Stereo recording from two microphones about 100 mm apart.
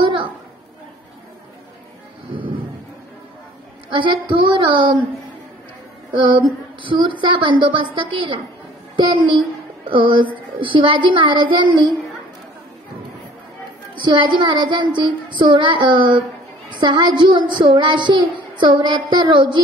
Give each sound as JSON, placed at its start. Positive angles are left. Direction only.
{"t": 0.0, "sound": "a sound", "side_deg": -55}
{"t": 3.9, "sound": "a woman's voice", "side_deg": -55}
{"t": 6.1, "sound": "a woman's voice", "side_deg": -55}
{"t": 14.0, "sound": "speech", "side_deg": -50}